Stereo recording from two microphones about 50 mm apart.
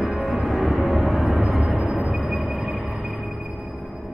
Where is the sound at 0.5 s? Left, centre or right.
Centre.